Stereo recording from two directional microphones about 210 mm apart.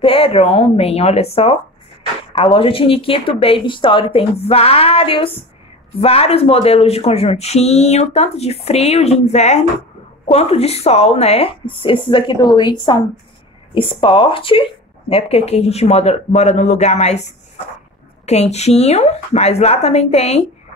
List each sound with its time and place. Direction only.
0.0 s speech: 25° left (ahead or behind)